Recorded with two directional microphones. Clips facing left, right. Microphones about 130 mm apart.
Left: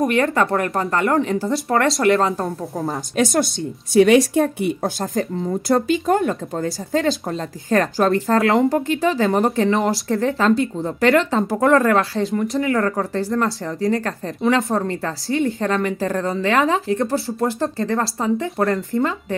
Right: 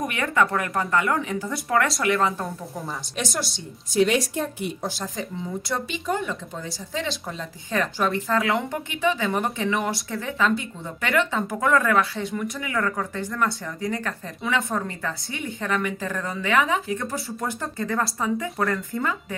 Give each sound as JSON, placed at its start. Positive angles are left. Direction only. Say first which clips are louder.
{"t": 0.1, "sound": "speech", "louder": "left 5 dB", "side_deg": 35}
{"t": 2.8, "sound": "speech", "louder": "left 11 dB", "side_deg": 50}